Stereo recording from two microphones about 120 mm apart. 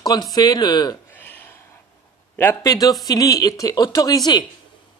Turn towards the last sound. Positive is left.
turn(degrees=35)  # may be behind; listen again after turning